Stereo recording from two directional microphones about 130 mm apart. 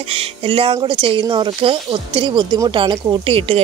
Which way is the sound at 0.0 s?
45° right (ahead or behind).